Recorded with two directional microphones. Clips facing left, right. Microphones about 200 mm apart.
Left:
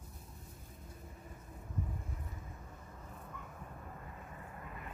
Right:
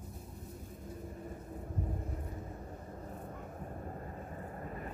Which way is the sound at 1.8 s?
45° right (ahead or behind).